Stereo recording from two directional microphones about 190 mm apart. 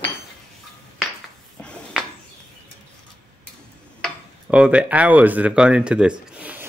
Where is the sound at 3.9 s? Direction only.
Centre (ahead or behind).